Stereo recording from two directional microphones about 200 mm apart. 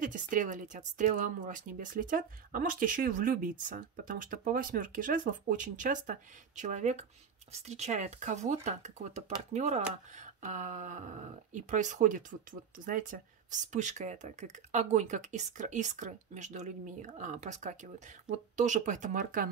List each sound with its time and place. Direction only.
0.0 s speech: 40° right (ahead or behind)